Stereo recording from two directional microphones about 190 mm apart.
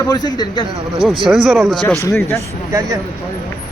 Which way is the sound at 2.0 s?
15° left (ahead or behind).